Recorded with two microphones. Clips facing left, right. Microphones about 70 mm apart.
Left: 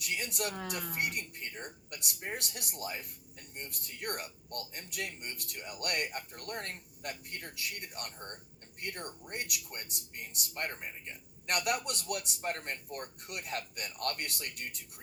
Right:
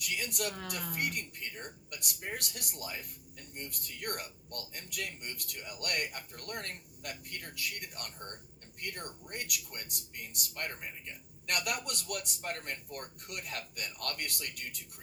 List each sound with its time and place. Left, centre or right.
0.1 s a man's voice: left